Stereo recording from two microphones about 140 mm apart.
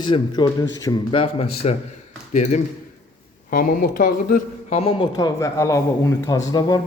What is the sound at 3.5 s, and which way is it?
Speech, 80° left.